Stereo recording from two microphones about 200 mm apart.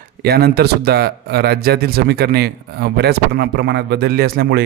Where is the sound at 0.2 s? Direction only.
50° right (ahead or behind).